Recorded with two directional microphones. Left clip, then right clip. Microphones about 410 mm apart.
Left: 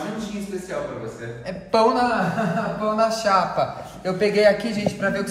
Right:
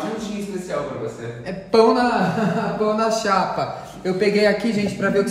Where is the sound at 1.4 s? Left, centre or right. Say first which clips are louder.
Right 3 dB; centre.